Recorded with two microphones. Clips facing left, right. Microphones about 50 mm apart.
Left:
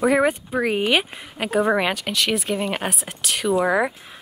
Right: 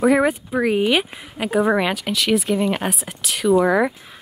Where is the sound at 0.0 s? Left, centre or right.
Centre.